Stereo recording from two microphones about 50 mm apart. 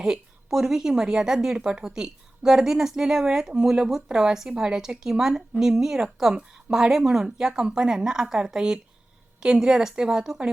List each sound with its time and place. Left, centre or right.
0.0 s a woman's voice: centre